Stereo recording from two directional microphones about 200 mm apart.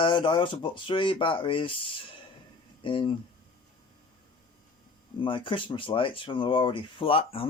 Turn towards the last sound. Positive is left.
turn(degrees=25)  # may be behind; listen again after turning